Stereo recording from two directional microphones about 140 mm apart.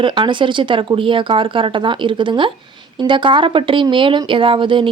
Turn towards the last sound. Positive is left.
turn(degrees=-35)  # may be behind; listen again after turning